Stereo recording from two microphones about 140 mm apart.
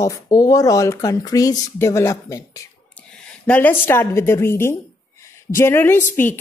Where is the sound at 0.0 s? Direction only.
25° left (ahead or behind).